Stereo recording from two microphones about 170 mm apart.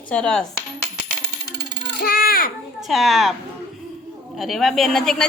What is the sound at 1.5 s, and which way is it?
Coin, 85° right.